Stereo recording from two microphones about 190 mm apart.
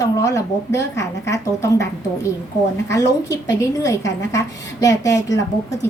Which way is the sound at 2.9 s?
15° left (ahead or behind).